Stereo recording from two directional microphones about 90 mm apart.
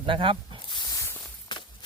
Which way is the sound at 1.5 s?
60° left (ahead or behind).